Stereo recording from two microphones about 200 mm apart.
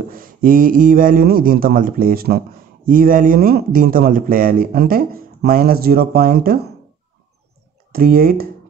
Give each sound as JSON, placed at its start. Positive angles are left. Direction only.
{"t": 0.1, "sound": "a man's voice", "side_deg": -45}
{"t": 7.9, "sound": "a man's voice", "side_deg": -50}